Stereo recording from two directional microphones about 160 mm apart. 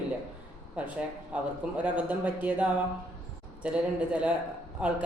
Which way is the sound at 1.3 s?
10° right (ahead or behind).